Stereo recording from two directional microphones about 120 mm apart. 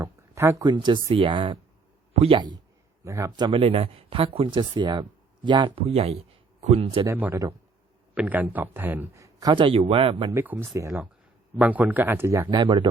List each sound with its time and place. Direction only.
0.0 s a sound: 25° right (ahead or behind)
0.6 s speech: 40° right (ahead or behind)
3.0 s a man's voice: 25° right (ahead or behind)
3.3 s speech: 35° right (ahead or behind)
3.6 s speech: 50° right (ahead or behind)
5.9 s speech: 60° right (ahead or behind)
8.1 s a man's voice: 15° right (ahead or behind)
9.2 s a man's voice: 35° right (ahead or behind)
10.3 s a man's voice: 15° right (ahead or behind)
11.6 s a man's voice: 15° right (ahead or behind)
12.5 s speech: 35° right (ahead or behind)